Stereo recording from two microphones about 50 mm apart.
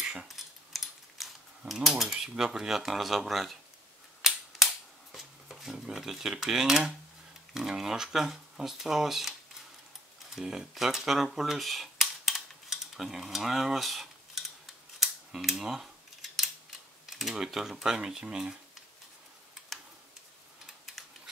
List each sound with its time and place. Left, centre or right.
0.0 s a sound: centre
0.4 s mechanisms: centre
2.1 s speech: centre
4.2 s cap gun: centre
5.1 s speech: centre
10.3 s speech: centre
15.0 s scissors: centre
15.7 s a sound: centre
17.0 s speech: centre